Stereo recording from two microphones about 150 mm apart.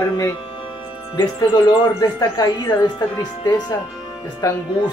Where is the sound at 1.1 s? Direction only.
30° left (ahead or behind).